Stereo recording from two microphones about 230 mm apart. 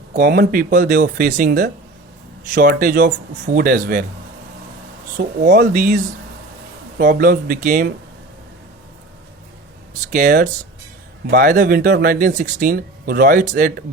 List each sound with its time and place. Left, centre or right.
0.1 s speech: right
5.1 s speech: right
7.0 s speech: right
10.1 s speech: right